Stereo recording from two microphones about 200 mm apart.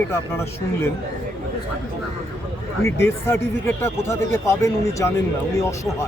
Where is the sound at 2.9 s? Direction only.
10° left (ahead or behind).